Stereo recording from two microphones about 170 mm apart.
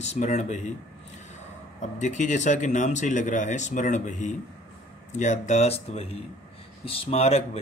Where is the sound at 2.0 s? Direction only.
45° left (ahead or behind).